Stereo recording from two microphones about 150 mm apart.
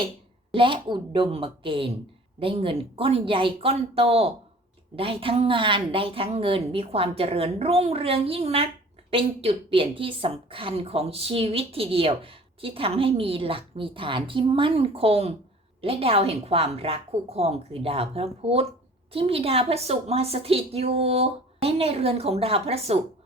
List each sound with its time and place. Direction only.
0.5 s a woman's voice: 35° right (ahead or behind)